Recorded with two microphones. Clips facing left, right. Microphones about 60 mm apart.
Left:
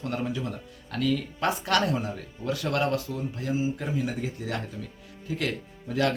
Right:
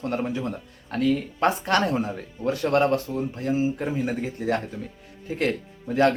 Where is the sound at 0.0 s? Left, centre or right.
Right.